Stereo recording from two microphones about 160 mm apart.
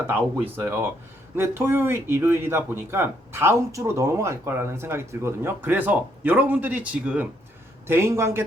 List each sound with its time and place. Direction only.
0.0 s speech: 10° right (ahead or behind)